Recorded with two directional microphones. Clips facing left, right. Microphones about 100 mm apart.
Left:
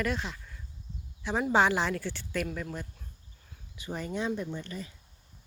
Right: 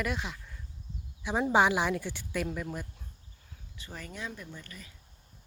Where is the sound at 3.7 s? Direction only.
20° left (ahead or behind).